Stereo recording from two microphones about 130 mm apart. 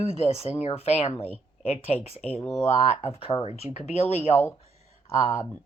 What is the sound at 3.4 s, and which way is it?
Speech, 55° left (ahead or behind).